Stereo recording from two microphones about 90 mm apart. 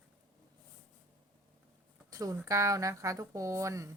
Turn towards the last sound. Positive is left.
turn(degrees=-35)  # may be behind; listen again after turning